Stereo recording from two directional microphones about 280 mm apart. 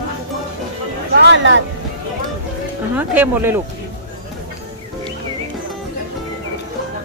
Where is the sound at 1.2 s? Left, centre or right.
Right.